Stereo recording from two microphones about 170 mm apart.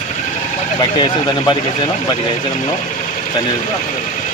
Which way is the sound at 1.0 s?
25° left (ahead or behind).